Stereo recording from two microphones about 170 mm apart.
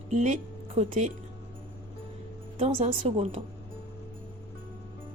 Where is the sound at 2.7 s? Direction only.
45° right (ahead or behind).